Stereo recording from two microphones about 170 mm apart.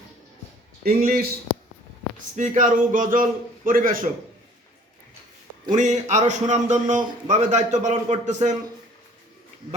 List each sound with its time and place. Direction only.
0.9 s speech: 60° right (ahead or behind)
2.3 s a man's voice: 50° right (ahead or behind)
5.7 s a man's voice: 45° right (ahead or behind)